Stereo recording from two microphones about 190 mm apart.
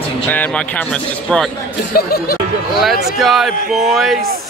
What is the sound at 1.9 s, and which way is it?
Speech, 55° left (ahead or behind).